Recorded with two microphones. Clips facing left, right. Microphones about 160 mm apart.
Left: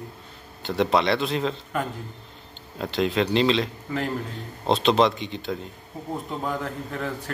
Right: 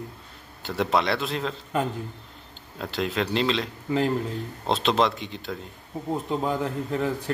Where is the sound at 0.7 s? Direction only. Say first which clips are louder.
Left 3 dB; centre (ahead or behind).